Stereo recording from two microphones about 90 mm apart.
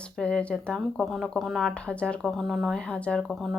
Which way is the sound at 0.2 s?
10° left (ahead or behind).